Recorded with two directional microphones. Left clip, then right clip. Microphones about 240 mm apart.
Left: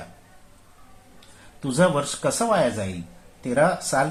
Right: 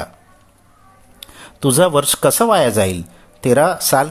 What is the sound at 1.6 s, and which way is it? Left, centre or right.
Speech, right.